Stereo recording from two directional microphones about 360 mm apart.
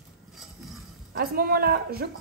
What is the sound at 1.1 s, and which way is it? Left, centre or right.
A woman's voice, right.